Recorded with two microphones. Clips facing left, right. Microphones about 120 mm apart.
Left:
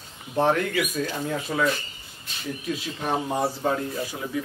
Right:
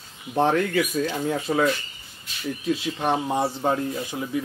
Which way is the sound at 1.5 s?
45° right (ahead or behind).